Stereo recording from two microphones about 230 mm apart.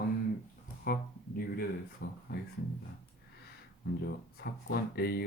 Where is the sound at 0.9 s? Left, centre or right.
Left.